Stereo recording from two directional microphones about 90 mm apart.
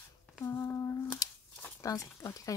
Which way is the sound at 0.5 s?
25° left (ahead or behind).